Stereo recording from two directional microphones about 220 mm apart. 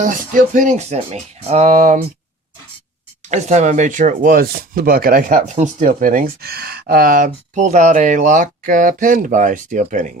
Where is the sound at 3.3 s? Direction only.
30° right (ahead or behind).